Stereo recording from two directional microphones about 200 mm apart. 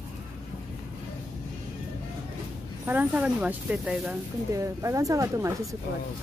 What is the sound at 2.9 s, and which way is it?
Speech, 10° right (ahead or behind).